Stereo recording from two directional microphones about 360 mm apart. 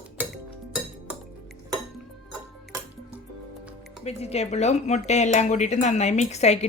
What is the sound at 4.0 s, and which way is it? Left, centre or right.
Speech, centre.